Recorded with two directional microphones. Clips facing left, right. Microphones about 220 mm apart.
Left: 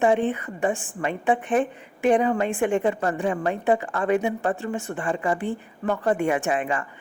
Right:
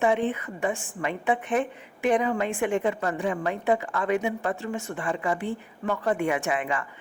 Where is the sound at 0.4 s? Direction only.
30° left (ahead or behind).